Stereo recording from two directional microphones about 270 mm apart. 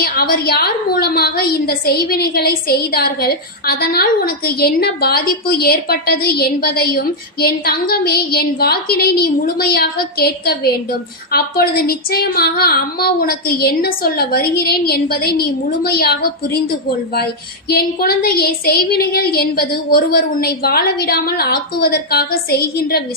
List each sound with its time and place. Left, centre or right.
0.0 s a woman's voice: left
17.7 s a woman's voice: left